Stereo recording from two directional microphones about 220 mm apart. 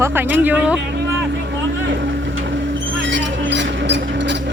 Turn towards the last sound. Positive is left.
turn(degrees=-55)  # may be behind; listen again after turning